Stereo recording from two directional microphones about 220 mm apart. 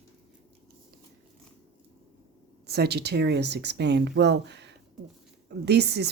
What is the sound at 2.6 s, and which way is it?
Speech, 45° right (ahead or behind).